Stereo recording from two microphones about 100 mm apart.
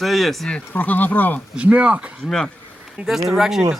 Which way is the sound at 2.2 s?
5° left (ahead or behind).